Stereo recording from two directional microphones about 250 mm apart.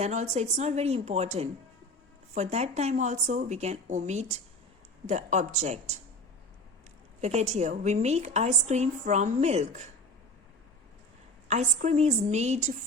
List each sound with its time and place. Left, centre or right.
0.0 s a woman's voice: right
7.2 s a woman's voice: right
11.4 s a woman's voice: right